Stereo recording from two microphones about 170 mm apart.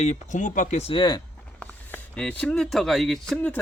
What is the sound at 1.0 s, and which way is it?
Speech, 25° left (ahead or behind).